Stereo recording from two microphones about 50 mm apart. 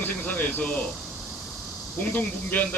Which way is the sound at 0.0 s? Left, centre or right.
Left.